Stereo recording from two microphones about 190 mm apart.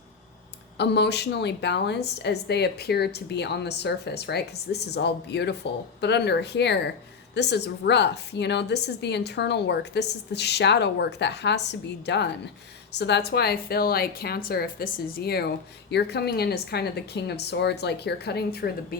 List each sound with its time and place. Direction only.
0.8 s speech: 60° left (ahead or behind)